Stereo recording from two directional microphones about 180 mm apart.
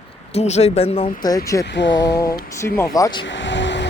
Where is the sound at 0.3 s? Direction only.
35° left (ahead or behind).